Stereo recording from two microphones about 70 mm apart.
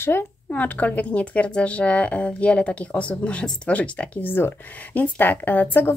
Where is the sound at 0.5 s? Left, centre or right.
Left.